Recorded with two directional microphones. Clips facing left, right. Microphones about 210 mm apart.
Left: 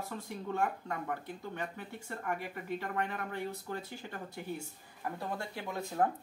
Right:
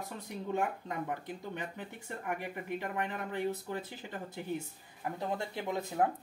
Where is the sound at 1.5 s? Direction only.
20° right (ahead or behind).